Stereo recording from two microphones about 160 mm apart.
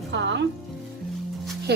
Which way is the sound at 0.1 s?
90° right.